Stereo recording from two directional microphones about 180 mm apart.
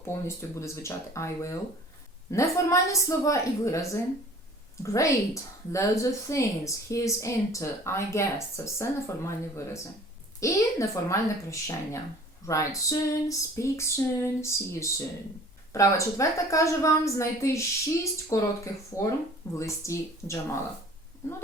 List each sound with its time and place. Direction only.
0.3 s a woman's voice: 15° left (ahead or behind)